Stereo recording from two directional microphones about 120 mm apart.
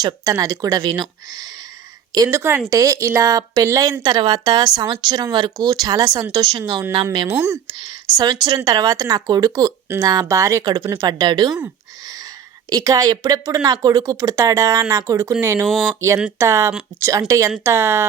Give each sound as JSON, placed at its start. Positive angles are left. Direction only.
{"t": 0.0, "sound": "a woman's voice", "side_deg": -25}
{"t": 7.3, "sound": "speech", "side_deg": -20}
{"t": 8.1, "sound": "a woman's voice", "side_deg": -35}
{"t": 12.0, "sound": "a sound", "side_deg": -30}
{"t": 12.7, "sound": "speech", "side_deg": -30}
{"t": 15.6, "sound": "speech", "side_deg": 0}
{"t": 16.0, "sound": "speech", "side_deg": -25}